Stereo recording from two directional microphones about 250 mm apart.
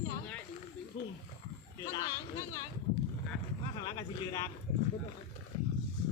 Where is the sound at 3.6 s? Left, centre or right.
Centre.